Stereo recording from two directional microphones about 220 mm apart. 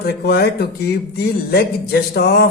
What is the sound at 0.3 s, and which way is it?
A man's voice, 45° left (ahead or behind).